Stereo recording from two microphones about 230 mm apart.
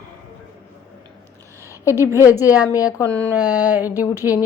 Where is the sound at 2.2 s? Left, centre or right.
Centre.